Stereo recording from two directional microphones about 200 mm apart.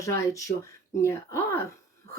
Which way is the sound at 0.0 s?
15° left (ahead or behind).